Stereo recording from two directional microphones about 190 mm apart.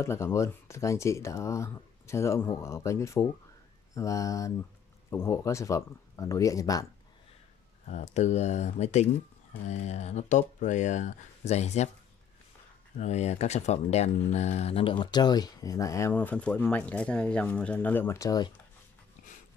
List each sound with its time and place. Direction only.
0.0 s speech: 15° left (ahead or behind)
7.9 s speech: 35° left (ahead or behind)
12.9 s speech: 35° left (ahead or behind); by 18.5 s 20° left (ahead or behind)